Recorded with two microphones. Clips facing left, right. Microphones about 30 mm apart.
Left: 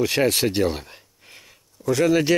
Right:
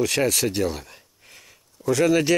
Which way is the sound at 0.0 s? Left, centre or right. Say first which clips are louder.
Left 2 dB; centre.